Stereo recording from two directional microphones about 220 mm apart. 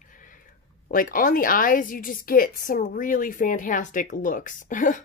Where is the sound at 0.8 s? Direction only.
40° left (ahead or behind).